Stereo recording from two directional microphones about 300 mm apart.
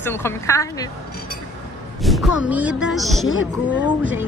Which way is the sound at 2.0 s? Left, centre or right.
Centre.